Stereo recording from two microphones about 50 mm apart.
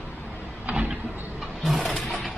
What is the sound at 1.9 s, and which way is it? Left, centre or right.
Music, centre.